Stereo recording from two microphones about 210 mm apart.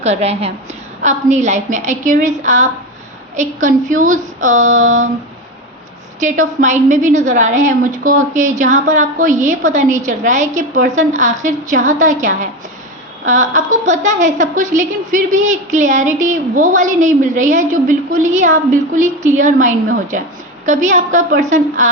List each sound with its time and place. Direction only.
0.0 s a woman's voice: 30° right (ahead or behind)
6.1 s a woman's voice: 35° right (ahead or behind)